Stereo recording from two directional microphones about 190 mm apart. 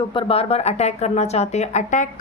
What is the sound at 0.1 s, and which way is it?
A woman's voice, 30° left (ahead or behind).